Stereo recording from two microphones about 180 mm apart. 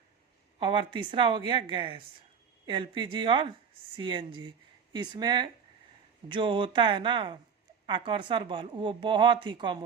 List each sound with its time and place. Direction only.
0.6 s speech: 25° right (ahead or behind)